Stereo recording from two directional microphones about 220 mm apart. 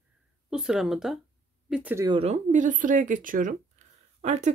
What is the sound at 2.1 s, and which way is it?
Speech, 30° right (ahead or behind).